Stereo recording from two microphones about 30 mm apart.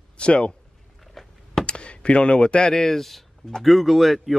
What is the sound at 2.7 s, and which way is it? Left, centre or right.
Speech, centre.